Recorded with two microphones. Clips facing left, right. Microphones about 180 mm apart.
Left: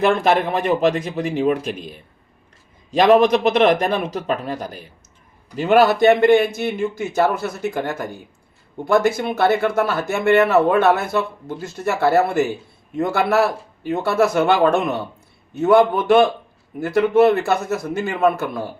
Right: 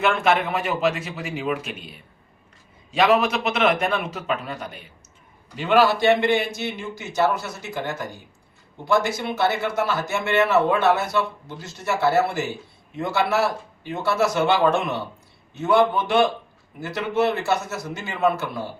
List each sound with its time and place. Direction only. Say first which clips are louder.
0.0 s speech: left 4 dB; 35° left (ahead or behind)
3.1 s speech: left 11 dB; 35° left (ahead or behind)
5.5 s speech: left 4 dB; 45° left (ahead or behind)